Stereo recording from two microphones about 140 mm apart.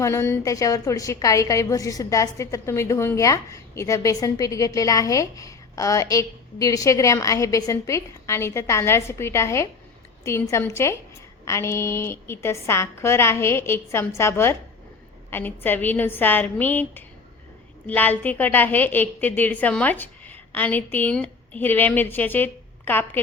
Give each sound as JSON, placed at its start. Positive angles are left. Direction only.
{"t": 0.0, "sound": "a woman's voice", "side_deg": 20}